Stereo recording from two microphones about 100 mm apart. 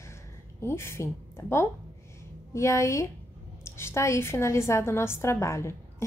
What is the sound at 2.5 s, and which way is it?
A woman's voice, 30° left (ahead or behind).